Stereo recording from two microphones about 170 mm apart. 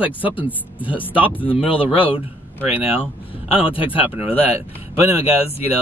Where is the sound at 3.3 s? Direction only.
30° left (ahead or behind).